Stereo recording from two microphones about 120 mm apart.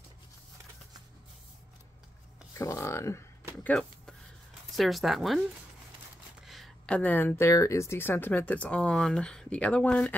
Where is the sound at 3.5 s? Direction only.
5° left (ahead or behind).